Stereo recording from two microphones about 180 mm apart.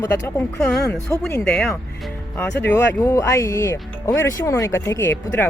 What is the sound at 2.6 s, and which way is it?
Speech, 15° left (ahead or behind).